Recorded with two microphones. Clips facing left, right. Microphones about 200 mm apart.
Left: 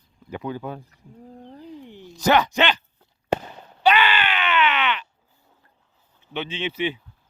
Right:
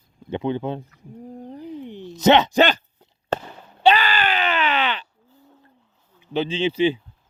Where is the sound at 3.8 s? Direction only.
35° right (ahead or behind).